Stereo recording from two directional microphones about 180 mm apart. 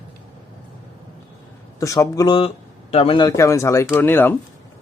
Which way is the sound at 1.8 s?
20° left (ahead or behind).